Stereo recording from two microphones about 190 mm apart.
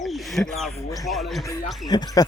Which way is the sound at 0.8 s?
15° left (ahead or behind).